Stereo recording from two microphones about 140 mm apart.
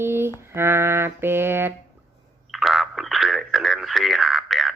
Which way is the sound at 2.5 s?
Centre (ahead or behind).